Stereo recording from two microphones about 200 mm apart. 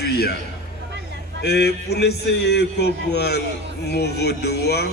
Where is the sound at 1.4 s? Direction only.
55° left (ahead or behind).